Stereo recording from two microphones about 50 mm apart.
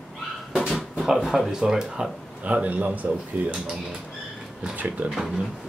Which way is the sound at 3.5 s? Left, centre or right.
Centre.